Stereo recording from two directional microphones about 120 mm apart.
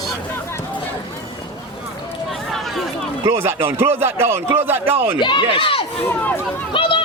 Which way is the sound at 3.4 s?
20° right (ahead or behind).